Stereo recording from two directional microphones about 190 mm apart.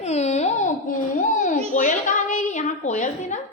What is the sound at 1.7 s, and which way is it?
A woman's voice, 45° left (ahead or behind).